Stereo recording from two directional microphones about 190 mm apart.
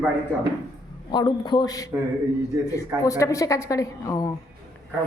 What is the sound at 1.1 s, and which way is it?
A man's voice, 25° left (ahead or behind).